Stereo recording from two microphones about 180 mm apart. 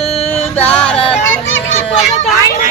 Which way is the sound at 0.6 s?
5° left (ahead or behind).